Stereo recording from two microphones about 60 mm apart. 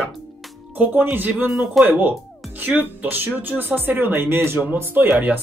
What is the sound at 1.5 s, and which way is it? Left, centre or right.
Speech, centre.